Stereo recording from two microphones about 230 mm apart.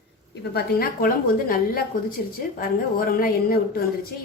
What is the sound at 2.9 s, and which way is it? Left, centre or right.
Speech, left.